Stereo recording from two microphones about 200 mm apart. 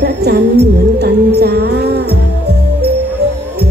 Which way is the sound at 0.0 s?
55° right (ahead or behind).